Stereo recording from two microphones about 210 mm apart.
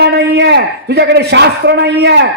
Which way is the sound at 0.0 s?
55° right (ahead or behind).